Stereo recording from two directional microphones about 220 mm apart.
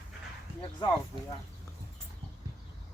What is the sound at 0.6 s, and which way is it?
Speech, 20° left (ahead or behind).